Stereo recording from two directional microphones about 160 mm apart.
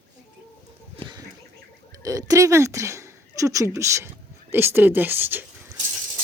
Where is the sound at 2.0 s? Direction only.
20° right (ahead or behind).